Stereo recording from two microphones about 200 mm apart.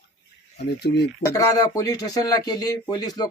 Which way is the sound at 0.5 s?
55° left (ahead or behind).